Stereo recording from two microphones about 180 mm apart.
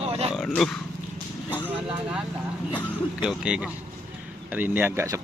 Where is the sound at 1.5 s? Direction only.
10° right (ahead or behind).